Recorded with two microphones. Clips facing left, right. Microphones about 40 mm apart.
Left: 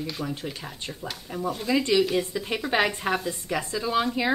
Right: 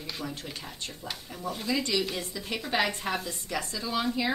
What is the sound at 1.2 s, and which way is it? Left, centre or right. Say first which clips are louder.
Speech: left 8 dB; centre.